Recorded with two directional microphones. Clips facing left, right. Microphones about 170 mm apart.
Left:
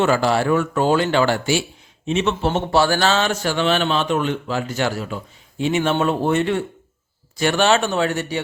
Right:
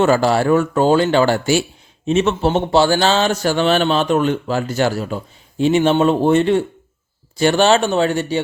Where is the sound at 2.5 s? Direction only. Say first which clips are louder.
Right 3 dB; 25° right (ahead or behind).